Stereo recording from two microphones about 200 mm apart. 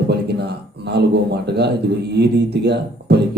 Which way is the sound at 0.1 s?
55° right (ahead or behind).